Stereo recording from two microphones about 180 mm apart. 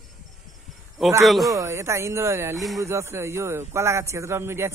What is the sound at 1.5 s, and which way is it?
A man's voice, 15° right (ahead or behind).